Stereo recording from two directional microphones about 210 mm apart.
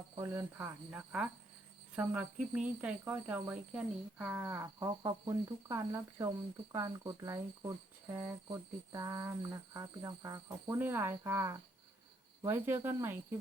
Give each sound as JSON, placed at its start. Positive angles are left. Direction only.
{"t": 0.2, "sound": "speech", "side_deg": -10}